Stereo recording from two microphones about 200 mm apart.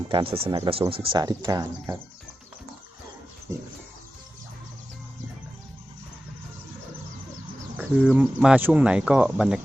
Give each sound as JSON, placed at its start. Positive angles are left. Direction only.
{"t": 0.1, "sound": "speech", "side_deg": -25}
{"t": 7.8, "sound": "speech", "side_deg": -5}